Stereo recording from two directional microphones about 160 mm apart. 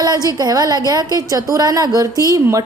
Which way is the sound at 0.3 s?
25° right (ahead or behind).